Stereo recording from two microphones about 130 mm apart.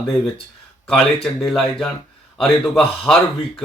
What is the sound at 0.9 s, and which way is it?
Speech, 5° left (ahead or behind).